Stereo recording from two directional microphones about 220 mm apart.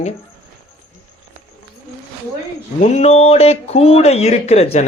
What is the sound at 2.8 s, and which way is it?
A man's voice, 30° left (ahead or behind).